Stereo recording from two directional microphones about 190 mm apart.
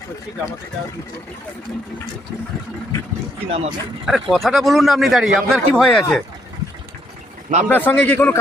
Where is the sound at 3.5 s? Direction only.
30° right (ahead or behind).